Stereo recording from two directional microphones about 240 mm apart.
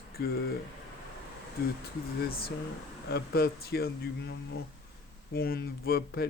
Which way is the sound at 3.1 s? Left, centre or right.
Left.